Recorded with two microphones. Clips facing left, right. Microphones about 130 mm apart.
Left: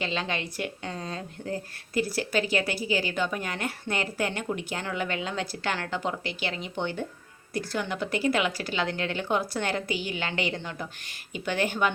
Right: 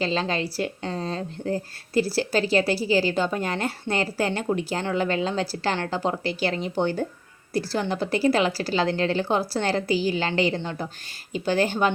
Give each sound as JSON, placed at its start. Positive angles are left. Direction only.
{"t": 0.0, "sound": "speech", "side_deg": -35}